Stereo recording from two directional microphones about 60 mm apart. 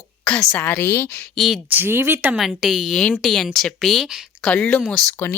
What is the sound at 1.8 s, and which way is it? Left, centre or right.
Speech, right.